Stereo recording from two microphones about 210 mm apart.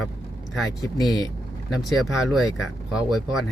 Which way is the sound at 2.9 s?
Centre (ahead or behind).